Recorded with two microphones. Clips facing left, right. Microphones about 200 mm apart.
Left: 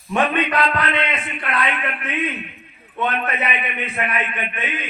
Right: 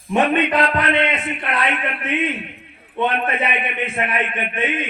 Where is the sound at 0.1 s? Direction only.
25° right (ahead or behind).